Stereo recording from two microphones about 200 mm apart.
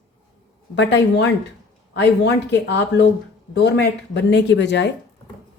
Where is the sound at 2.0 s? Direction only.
60° left (ahead or behind).